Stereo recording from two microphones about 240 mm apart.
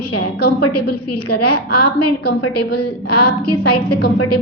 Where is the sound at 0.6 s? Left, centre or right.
Left.